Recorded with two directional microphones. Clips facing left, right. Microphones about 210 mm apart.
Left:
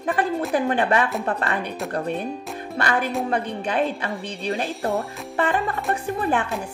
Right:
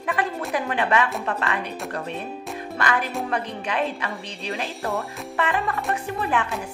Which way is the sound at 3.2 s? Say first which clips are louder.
Left 3 dB; 35° left (ahead or behind).